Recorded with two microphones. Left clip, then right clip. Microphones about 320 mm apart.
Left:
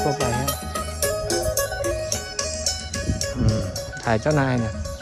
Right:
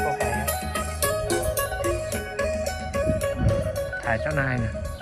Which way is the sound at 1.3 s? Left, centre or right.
Right.